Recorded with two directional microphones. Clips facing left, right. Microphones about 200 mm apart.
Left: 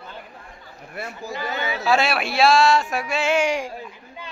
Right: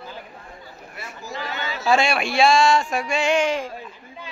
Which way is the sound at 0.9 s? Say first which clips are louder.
Left 7 dB; 55° left (ahead or behind).